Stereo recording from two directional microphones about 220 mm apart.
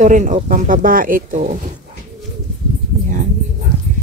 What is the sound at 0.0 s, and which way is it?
A woman's voice, 35° right (ahead or behind).